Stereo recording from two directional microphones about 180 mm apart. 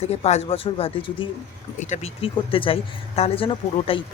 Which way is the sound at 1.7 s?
40° left (ahead or behind).